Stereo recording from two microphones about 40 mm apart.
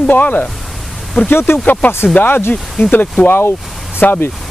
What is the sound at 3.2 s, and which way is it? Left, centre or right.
Speech, left.